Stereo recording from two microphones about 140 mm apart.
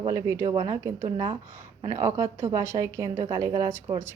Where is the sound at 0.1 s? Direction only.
20° right (ahead or behind).